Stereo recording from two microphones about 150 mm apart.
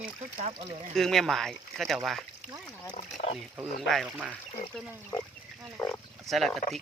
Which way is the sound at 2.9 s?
50° left (ahead or behind).